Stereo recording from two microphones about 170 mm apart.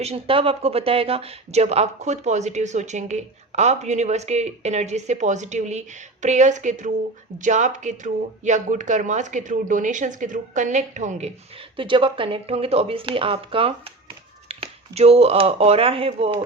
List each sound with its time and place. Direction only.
0.0 s speech: 35° right (ahead or behind)
11.8 s speech: 30° right (ahead or behind)